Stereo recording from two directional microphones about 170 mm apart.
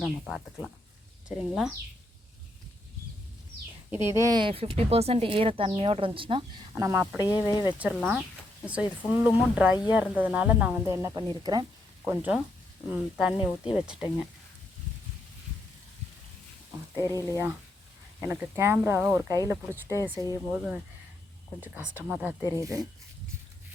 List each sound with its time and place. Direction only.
0.0 s speech: 5° right (ahead or behind)
4.0 s a woman's voice: 15° right (ahead or behind)
6.7 s speech: 15° right (ahead or behind)
7.2 s speech: 20° left (ahead or behind)
7.8 s speech: 5° right (ahead or behind)
12.0 s speech: 10° right (ahead or behind)
17.0 s speech: 20° left (ahead or behind)
17.3 s speech: 15° right (ahead or behind)